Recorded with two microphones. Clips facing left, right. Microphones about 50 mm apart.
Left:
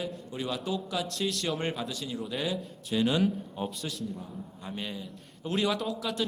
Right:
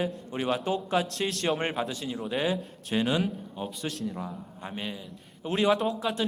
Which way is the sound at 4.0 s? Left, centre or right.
Right.